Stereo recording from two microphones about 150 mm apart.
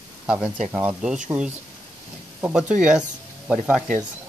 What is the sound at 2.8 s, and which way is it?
Speech, 5° right (ahead or behind).